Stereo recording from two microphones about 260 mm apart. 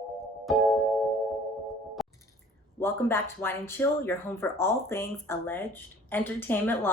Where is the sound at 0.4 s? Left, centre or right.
Centre.